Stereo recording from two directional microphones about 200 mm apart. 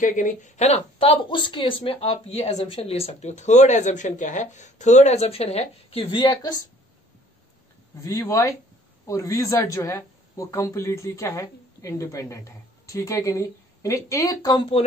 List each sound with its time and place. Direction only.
0.0 s a woman's voice: 40° left (ahead or behind); by 6.6 s 15° left (ahead or behind)
8.0 s speech: 15° left (ahead or behind)